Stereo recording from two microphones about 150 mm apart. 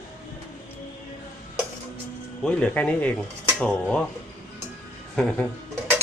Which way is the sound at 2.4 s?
10° left (ahead or behind).